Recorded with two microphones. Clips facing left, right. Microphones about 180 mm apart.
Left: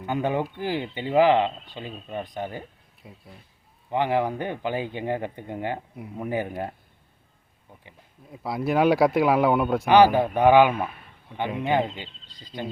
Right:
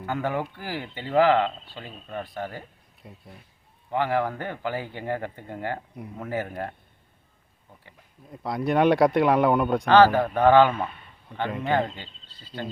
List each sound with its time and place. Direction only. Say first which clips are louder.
0.0 s speech: left 2 dB; 20° left (ahead or behind)
3.0 s speech: even; centre (ahead or behind)
3.8 s speech: left 1 dB; 20° left (ahead or behind)
8.3 s speech: even; 5° left (ahead or behind)
9.9 s speech: even; 15° left (ahead or behind)